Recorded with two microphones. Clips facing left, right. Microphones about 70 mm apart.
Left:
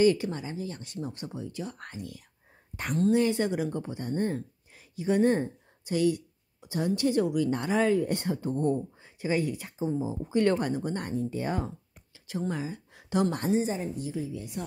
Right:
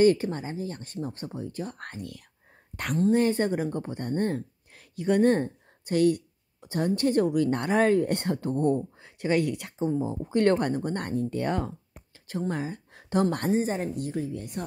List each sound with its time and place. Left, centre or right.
0.0 s a woman's voice: right
9.8 s a woman's voice: right